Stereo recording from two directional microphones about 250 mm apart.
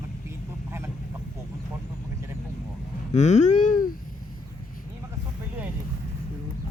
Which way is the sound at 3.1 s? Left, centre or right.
Left.